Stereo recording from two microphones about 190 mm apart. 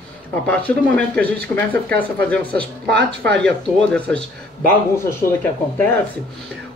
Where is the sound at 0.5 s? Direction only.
10° left (ahead or behind).